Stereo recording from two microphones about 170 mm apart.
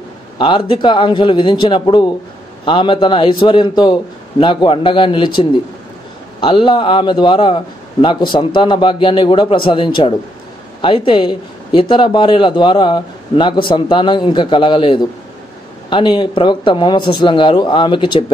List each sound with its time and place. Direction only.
0.4 s a man's voice: 30° left (ahead or behind)